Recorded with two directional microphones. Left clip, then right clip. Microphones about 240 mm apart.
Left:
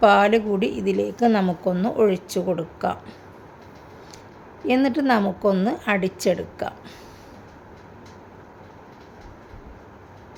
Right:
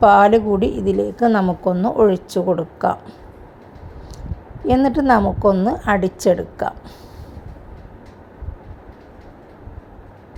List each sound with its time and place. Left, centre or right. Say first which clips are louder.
0.0 s a woman's voice: right 5 dB; centre
4.6 s a woman's voice: right 5 dB; centre